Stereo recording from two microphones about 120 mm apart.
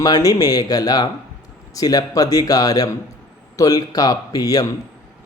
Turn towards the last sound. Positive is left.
turn(degrees=30)  # may be behind; listen again after turning